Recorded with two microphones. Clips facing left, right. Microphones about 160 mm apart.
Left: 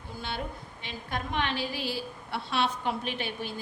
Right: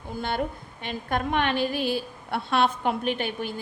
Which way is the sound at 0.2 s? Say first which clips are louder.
Right 8 dB; 55° right (ahead or behind).